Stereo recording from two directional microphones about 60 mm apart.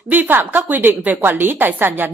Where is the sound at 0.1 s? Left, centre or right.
Right.